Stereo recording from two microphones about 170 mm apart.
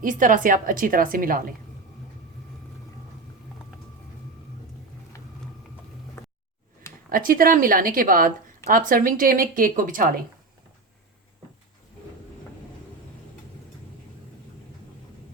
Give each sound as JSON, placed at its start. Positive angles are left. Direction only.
{"t": 0.0, "sound": "a woman's voice", "side_deg": -50}
{"t": 7.1, "sound": "a woman's voice", "side_deg": -55}